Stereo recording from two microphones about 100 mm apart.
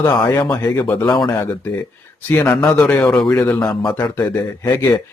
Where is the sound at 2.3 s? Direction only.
25° left (ahead or behind).